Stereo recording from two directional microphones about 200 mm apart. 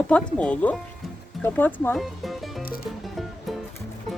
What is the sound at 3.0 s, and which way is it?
Music, centre (ahead or behind).